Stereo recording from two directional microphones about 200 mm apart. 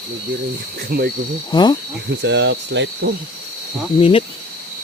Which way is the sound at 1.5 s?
20° left (ahead or behind).